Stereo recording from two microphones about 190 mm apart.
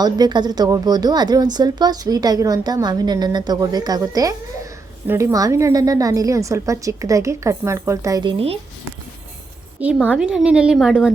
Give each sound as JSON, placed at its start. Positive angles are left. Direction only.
{"t": 0.0, "sound": "a woman's voice", "side_deg": -20}
{"t": 9.8, "sound": "a woman's voice", "side_deg": -5}